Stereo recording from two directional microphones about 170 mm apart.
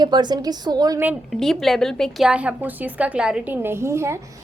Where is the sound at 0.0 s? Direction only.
25° right (ahead or behind).